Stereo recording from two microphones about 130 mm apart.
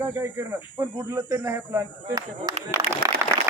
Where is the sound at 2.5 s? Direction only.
30° right (ahead or behind).